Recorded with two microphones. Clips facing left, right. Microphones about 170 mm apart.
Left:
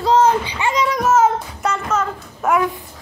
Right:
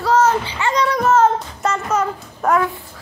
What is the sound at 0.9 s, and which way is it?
Child singing, 5° left (ahead or behind).